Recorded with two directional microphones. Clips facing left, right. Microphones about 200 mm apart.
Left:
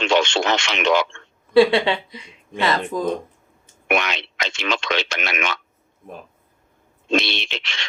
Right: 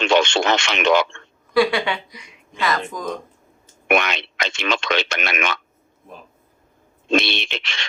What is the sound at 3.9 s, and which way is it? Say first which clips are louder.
Speech: right 2 dB; 55° right (ahead or behind).